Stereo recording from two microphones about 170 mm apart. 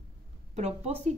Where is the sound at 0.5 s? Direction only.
40° right (ahead or behind).